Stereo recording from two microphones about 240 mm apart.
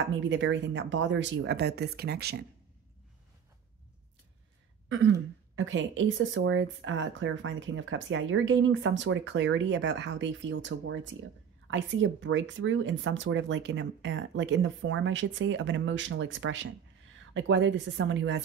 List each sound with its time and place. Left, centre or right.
0.1 s speech: right
5.6 s speech: right